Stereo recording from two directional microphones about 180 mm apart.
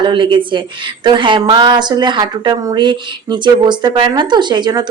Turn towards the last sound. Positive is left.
turn(degrees=-25)  # may be behind; listen again after turning